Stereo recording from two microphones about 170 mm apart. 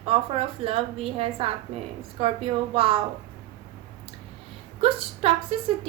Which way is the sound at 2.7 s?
35° right (ahead or behind).